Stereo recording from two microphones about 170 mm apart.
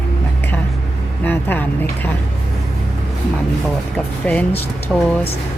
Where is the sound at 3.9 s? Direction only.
10° left (ahead or behind).